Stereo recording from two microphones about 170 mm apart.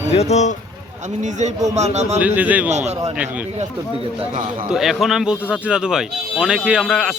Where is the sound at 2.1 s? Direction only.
10° right (ahead or behind).